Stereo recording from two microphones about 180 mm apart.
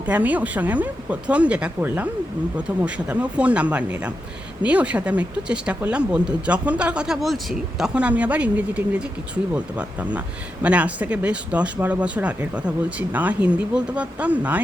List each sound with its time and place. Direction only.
0.0 s speech: 10° right (ahead or behind)